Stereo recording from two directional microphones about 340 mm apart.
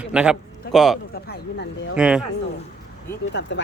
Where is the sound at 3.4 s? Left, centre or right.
Left.